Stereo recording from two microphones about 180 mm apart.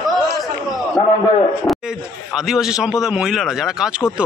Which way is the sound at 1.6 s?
Centre (ahead or behind).